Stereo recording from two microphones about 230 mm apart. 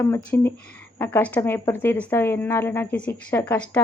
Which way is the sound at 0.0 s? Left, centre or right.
Centre.